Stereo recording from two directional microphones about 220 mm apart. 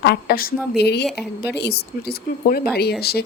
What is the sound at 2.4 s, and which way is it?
Speech, 45° left (ahead or behind).